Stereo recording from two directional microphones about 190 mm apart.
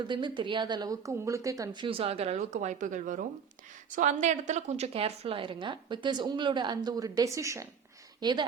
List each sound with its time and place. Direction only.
0.1 s a woman's voice: 25° right (ahead or behind)